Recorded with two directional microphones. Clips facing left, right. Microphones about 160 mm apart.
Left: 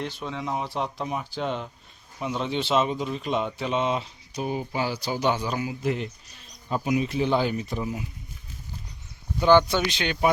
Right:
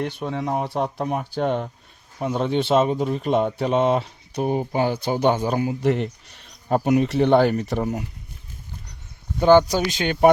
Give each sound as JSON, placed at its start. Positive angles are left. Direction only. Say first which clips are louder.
{"t": 0.0, "sound": "speech", "louder": "right 6 dB", "side_deg": -55}
{"t": 5.8, "sound": "speech", "louder": "right 6 dB", "side_deg": -65}
{"t": 9.4, "sound": "speech", "louder": "right 4 dB", "side_deg": -45}